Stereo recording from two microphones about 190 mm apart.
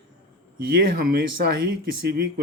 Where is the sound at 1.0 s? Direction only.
55° right (ahead or behind).